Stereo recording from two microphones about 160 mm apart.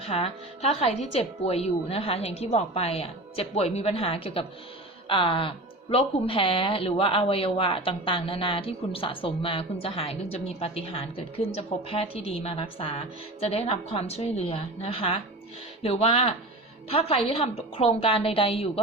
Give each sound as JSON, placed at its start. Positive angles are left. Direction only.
{"t": 0.0, "sound": "a woman's voice", "side_deg": 35}